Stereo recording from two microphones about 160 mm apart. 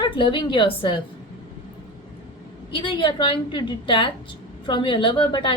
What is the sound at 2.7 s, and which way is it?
A woman's voice, 30° left (ahead or behind).